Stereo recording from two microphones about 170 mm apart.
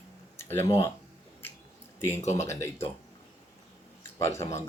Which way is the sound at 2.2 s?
40° left (ahead or behind).